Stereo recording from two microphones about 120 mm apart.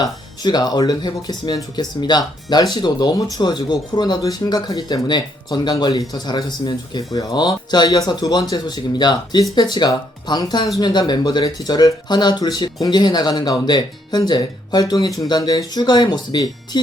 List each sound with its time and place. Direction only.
0.0 s speech: 35° left (ahead or behind)